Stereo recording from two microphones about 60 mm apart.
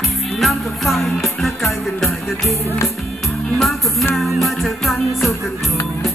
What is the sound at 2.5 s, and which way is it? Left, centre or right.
Music, left.